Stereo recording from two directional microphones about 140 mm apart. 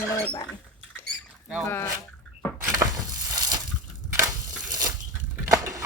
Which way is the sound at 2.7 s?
25° right (ahead or behind).